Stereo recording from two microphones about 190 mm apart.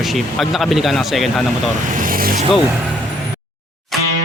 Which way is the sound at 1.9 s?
45° right (ahead or behind).